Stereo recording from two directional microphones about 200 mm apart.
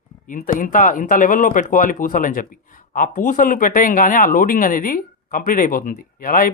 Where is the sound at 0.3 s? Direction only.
40° left (ahead or behind).